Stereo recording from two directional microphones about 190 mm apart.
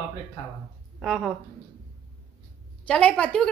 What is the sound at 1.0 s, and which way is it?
Speech, centre (ahead or behind).